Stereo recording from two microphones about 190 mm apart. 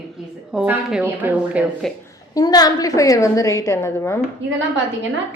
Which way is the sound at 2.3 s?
20° left (ahead or behind).